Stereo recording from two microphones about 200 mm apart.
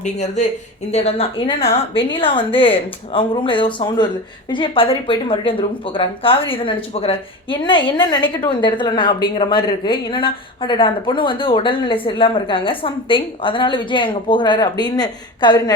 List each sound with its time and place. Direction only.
0.0 s speech: 35° left (ahead or behind)